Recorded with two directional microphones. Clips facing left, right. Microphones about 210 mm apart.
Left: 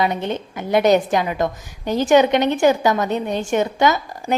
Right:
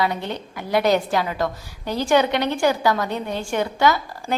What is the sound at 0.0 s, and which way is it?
A woman's voice, 20° left (ahead or behind).